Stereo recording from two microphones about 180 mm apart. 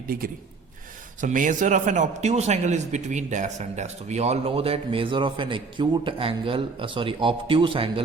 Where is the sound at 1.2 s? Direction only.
45° right (ahead or behind).